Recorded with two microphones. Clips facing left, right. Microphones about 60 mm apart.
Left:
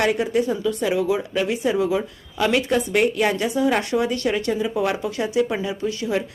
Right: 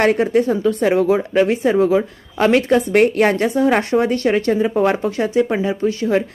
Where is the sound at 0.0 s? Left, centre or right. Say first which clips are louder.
Right 5 dB; right.